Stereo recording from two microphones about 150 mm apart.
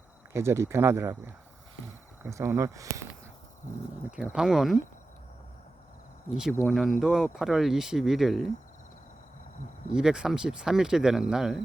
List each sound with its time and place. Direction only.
0.3 s speech: 20° right (ahead or behind)
2.2 s speech: 15° right (ahead or behind)
4.1 s speech: 5° right (ahead or behind)
6.6 s speech: centre (ahead or behind)
9.9 s speech: 5° right (ahead or behind)